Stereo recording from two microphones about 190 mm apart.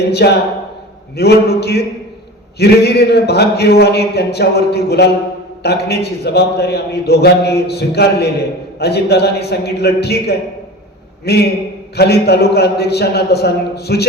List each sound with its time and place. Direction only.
0.1 s a man's voice: 60° left (ahead or behind)